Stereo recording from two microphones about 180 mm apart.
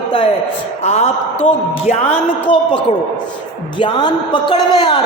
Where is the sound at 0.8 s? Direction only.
40° left (ahead or behind).